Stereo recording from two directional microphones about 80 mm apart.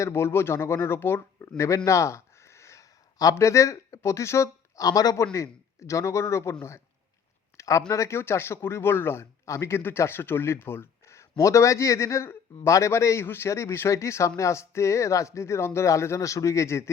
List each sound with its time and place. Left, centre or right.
0.0 s speech: left
4.9 s a man's voice: left
5.1 s speech: left